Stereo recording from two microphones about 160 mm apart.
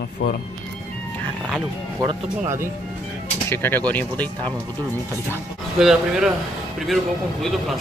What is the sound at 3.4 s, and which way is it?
Speech, 15° left (ahead or behind).